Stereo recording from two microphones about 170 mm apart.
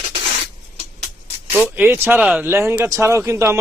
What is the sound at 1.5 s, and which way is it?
A man's voice, 10° right (ahead or behind).